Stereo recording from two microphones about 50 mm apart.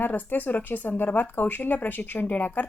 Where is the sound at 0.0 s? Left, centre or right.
Left.